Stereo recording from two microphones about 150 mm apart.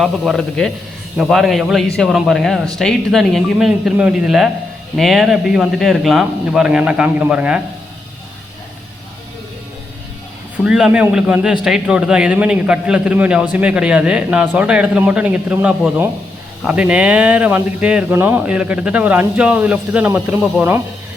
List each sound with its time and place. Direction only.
0.0 s a man's voice: 5° left (ahead or behind)
10.6 s a man's voice: 5° right (ahead or behind)